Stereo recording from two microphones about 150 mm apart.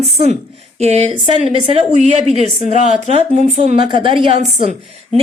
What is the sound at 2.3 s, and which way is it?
Speech, 50° left (ahead or behind).